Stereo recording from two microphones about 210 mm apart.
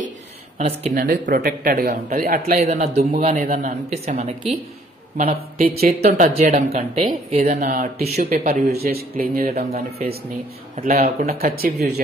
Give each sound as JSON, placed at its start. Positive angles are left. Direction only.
{"t": 0.6, "sound": "speech", "side_deg": -30}
{"t": 1.0, "sound": "speech", "side_deg": -45}
{"t": 2.6, "sound": "speech", "side_deg": -30}
{"t": 3.4, "sound": "speech", "side_deg": -45}
{"t": 3.9, "sound": "speech", "side_deg": -30}
{"t": 5.1, "sound": "speech", "side_deg": -40}
{"t": 9.8, "sound": "speech", "side_deg": -30}
{"t": 10.8, "sound": "speech", "side_deg": -40}